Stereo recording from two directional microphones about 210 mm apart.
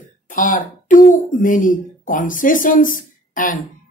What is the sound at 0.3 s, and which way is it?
A woman's voice, 40° left (ahead or behind).